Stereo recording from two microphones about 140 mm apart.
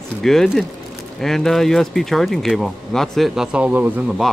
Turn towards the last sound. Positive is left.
turn(degrees=-5)  # may be behind; listen again after turning